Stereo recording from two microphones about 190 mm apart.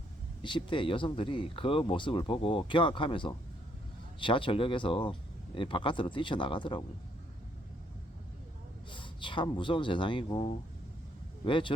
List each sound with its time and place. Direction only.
0.4 s speech: 25° left (ahead or behind)
8.9 s speech: 25° left (ahead or behind)